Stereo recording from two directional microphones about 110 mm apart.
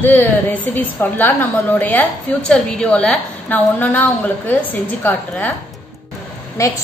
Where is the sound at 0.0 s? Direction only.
15° left (ahead or behind).